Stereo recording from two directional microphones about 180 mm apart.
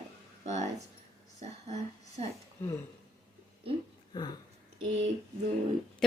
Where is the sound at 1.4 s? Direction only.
40° right (ahead or behind).